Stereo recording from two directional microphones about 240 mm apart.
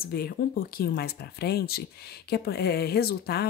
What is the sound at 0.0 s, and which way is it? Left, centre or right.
Speech, left.